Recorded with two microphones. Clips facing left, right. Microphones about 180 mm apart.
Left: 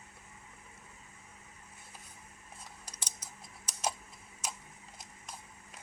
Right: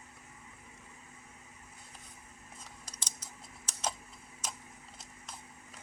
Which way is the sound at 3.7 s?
10° left (ahead or behind).